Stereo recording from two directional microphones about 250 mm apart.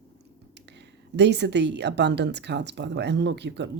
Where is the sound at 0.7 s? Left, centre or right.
Right.